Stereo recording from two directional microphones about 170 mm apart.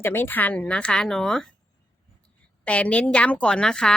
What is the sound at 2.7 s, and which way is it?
Speech, 5° left (ahead or behind).